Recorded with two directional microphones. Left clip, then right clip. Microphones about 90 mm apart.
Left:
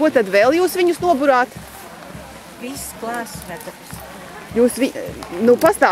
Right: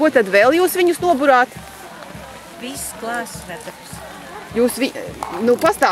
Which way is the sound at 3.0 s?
15° right (ahead or behind).